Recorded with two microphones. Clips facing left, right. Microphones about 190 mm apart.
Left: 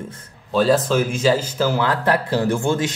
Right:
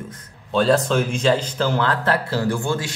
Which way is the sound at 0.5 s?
Centre (ahead or behind).